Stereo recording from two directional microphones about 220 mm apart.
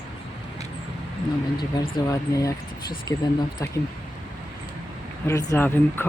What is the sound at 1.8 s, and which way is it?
Speech, 20° left (ahead or behind).